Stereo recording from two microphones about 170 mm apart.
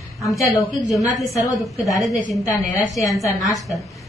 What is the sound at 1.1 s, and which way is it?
Speech, centre (ahead or behind).